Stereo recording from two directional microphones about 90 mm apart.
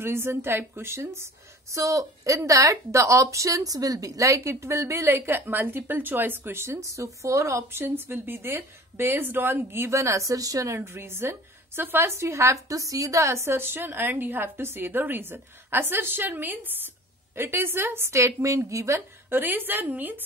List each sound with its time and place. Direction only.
0.0 s a woman's voice: 25° right (ahead or behind)